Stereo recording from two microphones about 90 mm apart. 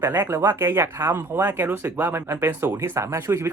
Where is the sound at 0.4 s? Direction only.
25° right (ahead or behind).